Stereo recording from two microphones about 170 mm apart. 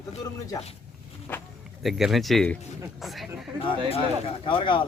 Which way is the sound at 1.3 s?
10° left (ahead or behind).